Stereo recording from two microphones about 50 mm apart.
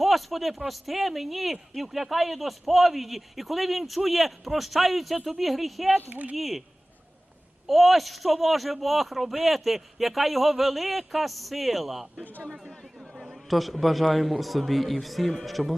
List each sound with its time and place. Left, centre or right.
0.0 s speech: centre
7.7 s speech: centre
12.2 s a man's voice: left
13.1 s a sound: centre
13.5 s speech: centre